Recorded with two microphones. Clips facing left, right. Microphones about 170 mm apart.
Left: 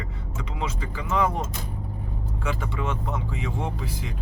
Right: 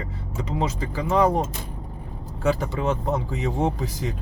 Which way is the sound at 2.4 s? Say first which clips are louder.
Right 7 dB; 40° right (ahead or behind).